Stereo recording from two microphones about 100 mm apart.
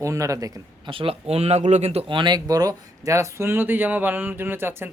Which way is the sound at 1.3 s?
90° right.